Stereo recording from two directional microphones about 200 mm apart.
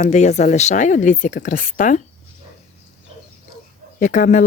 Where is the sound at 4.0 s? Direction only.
40° left (ahead or behind).